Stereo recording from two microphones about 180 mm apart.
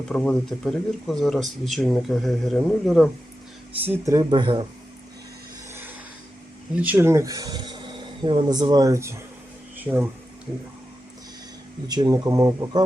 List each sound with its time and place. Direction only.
0.1 s speech: 5° left (ahead or behind)
4.0 s speech: 20° right (ahead or behind)
6.7 s speech: 10° right (ahead or behind)
11.9 s speech: 20° right (ahead or behind)